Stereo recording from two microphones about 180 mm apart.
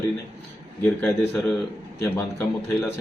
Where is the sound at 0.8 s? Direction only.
10° left (ahead or behind).